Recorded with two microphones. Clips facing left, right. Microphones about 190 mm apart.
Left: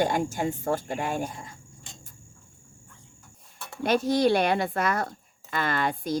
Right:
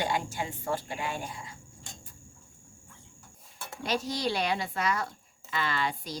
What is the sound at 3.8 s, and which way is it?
Speech, 55° left (ahead or behind).